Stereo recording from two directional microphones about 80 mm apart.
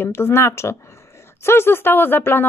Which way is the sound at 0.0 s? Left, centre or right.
Left.